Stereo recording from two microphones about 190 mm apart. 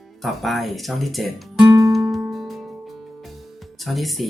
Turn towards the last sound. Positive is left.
turn(degrees=0)  # may be behind; listen again after turning